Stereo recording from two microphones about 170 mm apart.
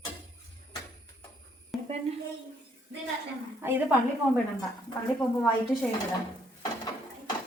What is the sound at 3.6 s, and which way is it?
Speech, 15° right (ahead or behind).